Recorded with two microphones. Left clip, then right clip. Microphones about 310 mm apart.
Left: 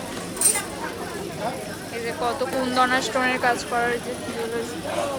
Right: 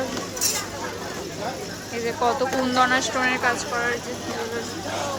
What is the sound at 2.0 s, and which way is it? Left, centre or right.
Speech, centre.